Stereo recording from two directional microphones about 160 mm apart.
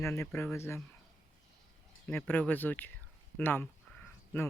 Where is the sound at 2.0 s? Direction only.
10° left (ahead or behind).